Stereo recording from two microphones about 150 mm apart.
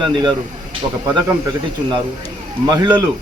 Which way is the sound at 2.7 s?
30° right (ahead or behind).